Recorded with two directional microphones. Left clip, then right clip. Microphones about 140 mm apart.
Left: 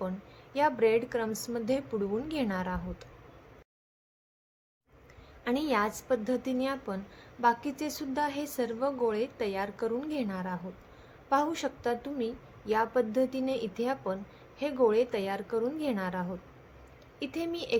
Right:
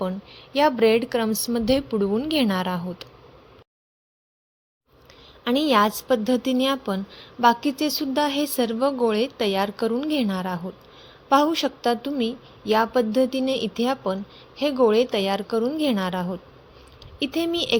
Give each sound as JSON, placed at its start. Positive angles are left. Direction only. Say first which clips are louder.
{"t": 0.5, "sound": "a woman's voice", "louder": "right 8 dB", "side_deg": -60}
{"t": 5.5, "sound": "a woman's voice", "louder": "right 10 dB", "side_deg": -45}
{"t": 11.3, "sound": "a woman's voice", "louder": "right 9 dB", "side_deg": -50}